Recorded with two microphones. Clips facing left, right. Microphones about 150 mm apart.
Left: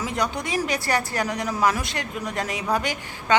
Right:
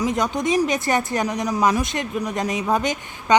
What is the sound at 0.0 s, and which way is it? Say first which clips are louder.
A woman's voice: right 5 dB; 20° right (ahead or behind).